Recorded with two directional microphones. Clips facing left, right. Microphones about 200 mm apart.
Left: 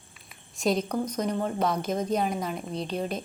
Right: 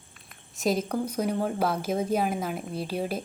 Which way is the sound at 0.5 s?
Centre (ahead or behind).